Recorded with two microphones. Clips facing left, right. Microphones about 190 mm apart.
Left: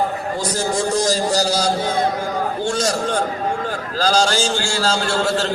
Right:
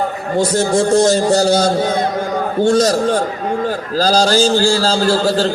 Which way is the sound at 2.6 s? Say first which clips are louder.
Right 10 dB; 40° right (ahead or behind).